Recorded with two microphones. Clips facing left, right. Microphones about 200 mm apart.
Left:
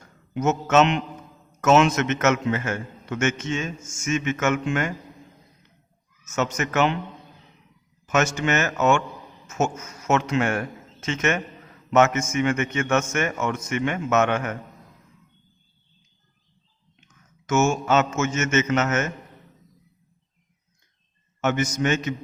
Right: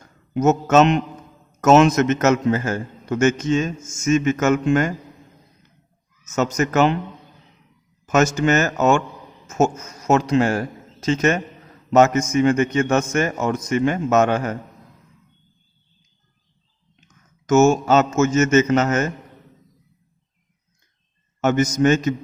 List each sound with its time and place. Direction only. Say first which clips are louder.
0.3 s a man's voice: right 4 dB; 40° right (ahead or behind)
6.2 s a man's voice: right 5 dB; 35° right (ahead or behind)
8.0 s a man's voice: right 5 dB; 40° right (ahead or behind)
17.4 s a man's voice: right 7 dB; 40° right (ahead or behind)
21.4 s a man's voice: right 6 dB; 40° right (ahead or behind)